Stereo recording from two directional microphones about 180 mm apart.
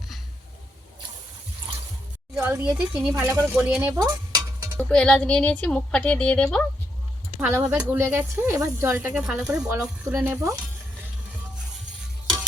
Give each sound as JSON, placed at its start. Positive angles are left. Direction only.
{"t": 2.3, "sound": "speech", "side_deg": -15}
{"t": 4.0, "sound": "cowbell", "side_deg": -20}
{"t": 4.8, "sound": "a woman's voice", "side_deg": 5}
{"t": 7.3, "sound": "speech", "side_deg": -15}
{"t": 10.2, "sound": "speech", "side_deg": -15}